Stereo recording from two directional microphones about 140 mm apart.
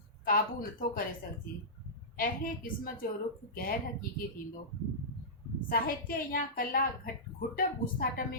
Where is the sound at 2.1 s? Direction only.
90° left.